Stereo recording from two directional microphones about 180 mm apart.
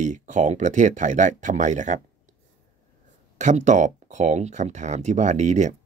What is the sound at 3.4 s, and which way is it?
A man's voice, 40° right (ahead or behind).